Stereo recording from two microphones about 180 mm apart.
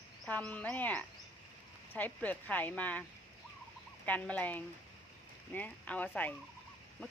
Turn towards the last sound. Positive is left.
turn(degrees=10)  # may be behind; listen again after turning